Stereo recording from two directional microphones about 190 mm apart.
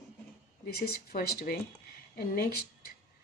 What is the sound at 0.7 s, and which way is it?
Speech, 55° left (ahead or behind).